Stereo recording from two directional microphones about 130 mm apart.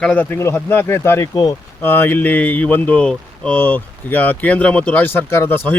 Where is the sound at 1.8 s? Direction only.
15° left (ahead or behind).